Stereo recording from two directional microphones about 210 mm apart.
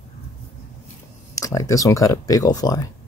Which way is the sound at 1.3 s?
15° left (ahead or behind).